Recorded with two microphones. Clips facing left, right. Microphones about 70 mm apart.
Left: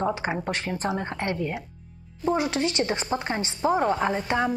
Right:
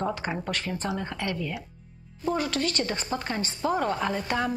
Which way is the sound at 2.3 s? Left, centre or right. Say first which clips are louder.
Left 2 dB; centre.